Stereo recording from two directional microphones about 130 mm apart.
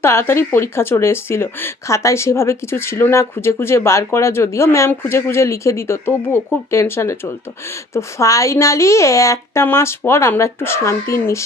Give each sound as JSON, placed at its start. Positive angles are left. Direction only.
{"t": 0.0, "sound": "speech", "side_deg": 20}